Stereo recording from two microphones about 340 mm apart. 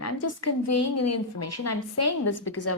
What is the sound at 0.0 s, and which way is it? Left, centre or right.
A woman's voice, left.